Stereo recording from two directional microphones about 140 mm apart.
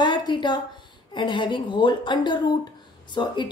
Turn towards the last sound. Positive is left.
turn(degrees=35)  # may be behind; listen again after turning